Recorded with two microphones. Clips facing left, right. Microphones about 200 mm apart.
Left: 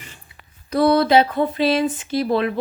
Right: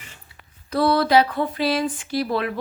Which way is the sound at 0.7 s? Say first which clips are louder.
Left 3 dB; 20° left (ahead or behind).